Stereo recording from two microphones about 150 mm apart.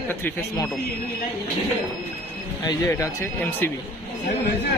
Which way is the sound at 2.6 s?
25° left (ahead or behind).